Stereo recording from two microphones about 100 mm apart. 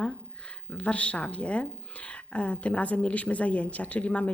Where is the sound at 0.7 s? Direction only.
15° left (ahead or behind).